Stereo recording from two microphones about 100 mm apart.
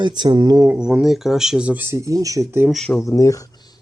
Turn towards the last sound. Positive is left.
turn(degrees=35)  # may be behind; listen again after turning